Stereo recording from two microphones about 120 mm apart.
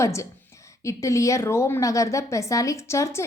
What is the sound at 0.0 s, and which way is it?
A woman's voice, 25° left (ahead or behind).